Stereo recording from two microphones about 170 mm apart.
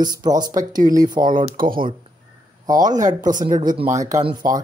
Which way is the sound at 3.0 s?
50° right (ahead or behind).